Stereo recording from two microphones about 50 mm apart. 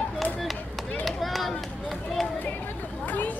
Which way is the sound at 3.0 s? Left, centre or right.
Left.